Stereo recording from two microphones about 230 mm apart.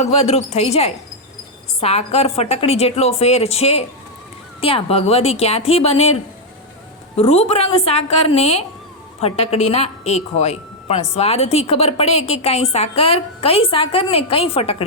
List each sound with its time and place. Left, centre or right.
0.0 s a woman's voice: left
7.2 s a woman's voice: left